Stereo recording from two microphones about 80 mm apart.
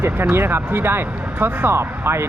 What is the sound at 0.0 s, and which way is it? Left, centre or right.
Speech, right.